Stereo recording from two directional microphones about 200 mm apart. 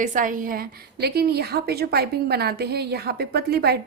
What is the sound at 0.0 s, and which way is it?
A woman's voice, 40° right (ahead or behind).